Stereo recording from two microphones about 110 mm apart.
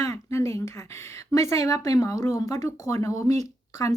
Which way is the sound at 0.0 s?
25° left (ahead or behind).